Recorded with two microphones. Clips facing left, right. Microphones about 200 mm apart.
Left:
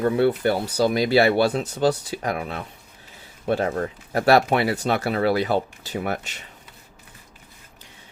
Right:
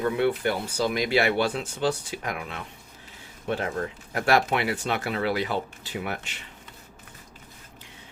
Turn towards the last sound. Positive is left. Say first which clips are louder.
# left 5 dB
turn(degrees=40)  # may be behind; listen again after turning